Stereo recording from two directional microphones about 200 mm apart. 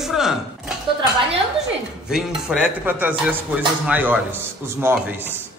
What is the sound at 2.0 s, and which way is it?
A man's voice, centre (ahead or behind).